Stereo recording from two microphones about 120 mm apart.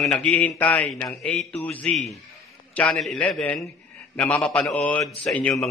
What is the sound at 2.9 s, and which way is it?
A man's voice, centre (ahead or behind).